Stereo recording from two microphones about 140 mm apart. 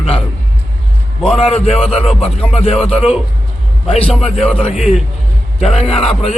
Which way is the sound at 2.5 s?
45° left (ahead or behind).